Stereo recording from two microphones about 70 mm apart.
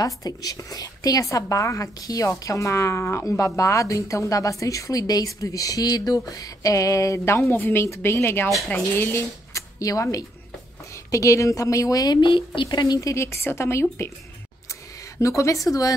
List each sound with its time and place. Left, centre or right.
0.0 s a woman's voice: left
8.5 s speech: centre
8.9 s a woman's voice: left
9.5 s a sound: left
11.1 s a woman's voice: left
13.1 s a woman's voice: left
15.1 s a woman's voice: left